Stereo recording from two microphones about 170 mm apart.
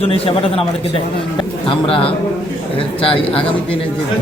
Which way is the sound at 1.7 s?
30° left (ahead or behind).